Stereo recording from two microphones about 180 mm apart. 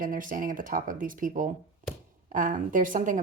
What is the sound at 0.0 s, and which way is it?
Speech, 50° right (ahead or behind).